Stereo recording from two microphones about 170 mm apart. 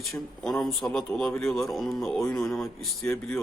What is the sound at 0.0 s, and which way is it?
Speech, centre (ahead or behind).